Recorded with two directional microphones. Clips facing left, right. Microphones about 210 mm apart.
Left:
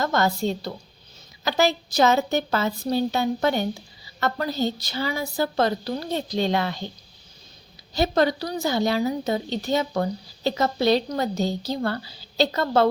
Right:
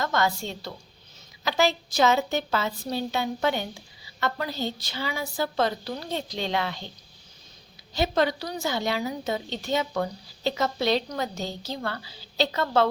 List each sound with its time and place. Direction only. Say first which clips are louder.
0.0 s a woman's voice: left 4 dB; 40° left (ahead or behind)
7.9 s a woman's voice: left 3 dB; 40° left (ahead or behind)